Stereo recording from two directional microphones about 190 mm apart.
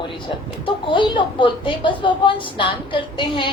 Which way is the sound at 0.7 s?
25° left (ahead or behind).